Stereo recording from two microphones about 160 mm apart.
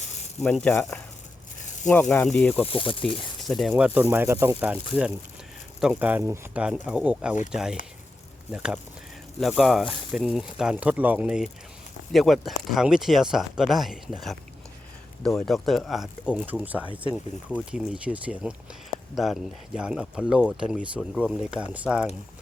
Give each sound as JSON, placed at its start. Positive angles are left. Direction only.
{"t": 0.7, "sound": "speech", "side_deg": 10}
{"t": 1.6, "sound": "snake", "side_deg": 50}
{"t": 1.9, "sound": "speech", "side_deg": 15}
{"t": 2.6, "sound": "speech", "side_deg": 35}
{"t": 3.7, "sound": "speech", "side_deg": -10}